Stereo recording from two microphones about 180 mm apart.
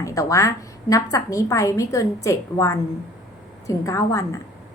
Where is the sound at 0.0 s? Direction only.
20° left (ahead or behind).